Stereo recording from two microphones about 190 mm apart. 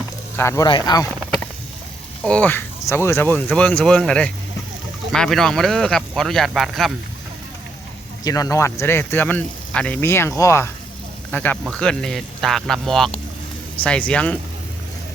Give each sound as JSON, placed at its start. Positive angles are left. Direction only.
{"t": 0.3, "sound": "speech", "side_deg": 15}
{"t": 2.2, "sound": "speech", "side_deg": 5}
{"t": 8.2, "sound": "speech", "side_deg": 20}